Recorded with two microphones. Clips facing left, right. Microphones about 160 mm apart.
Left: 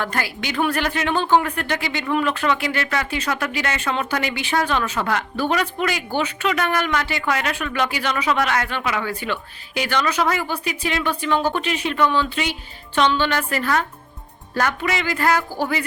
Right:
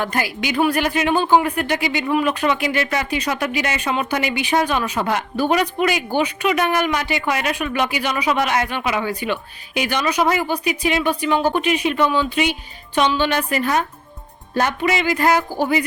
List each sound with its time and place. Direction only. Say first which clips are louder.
0.0 s speech: right 3 dB; 15° right (ahead or behind)